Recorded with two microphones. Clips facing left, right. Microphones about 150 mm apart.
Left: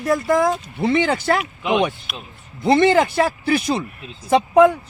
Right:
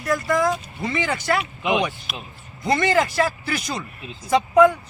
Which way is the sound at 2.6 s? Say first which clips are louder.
Left 5 dB; 25° left (ahead or behind).